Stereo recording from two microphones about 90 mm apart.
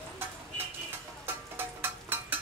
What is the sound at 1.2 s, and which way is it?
Music, 25° right (ahead or behind).